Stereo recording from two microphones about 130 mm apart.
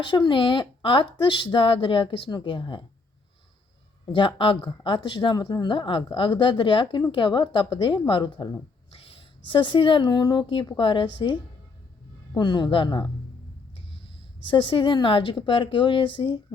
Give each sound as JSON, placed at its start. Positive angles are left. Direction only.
{"t": 0.0, "sound": "speech", "side_deg": 40}
{"t": 4.0, "sound": "speech", "side_deg": 35}
{"t": 14.4, "sound": "speech", "side_deg": 40}